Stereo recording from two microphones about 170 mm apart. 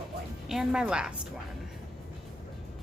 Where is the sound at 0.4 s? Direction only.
5° right (ahead or behind).